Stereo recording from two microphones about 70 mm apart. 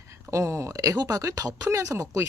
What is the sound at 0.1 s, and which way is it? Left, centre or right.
Speech, right.